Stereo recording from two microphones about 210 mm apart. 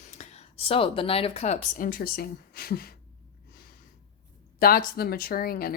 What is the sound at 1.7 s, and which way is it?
A woman's voice, 40° left (ahead or behind).